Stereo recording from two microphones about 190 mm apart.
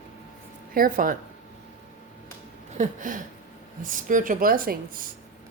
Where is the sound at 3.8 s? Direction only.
45° right (ahead or behind).